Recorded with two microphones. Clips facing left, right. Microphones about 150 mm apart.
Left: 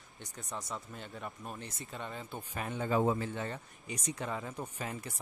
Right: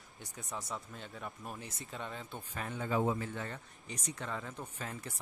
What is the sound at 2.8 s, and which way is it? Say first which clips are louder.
Speech: left 3 dB; 40° left (ahead or behind).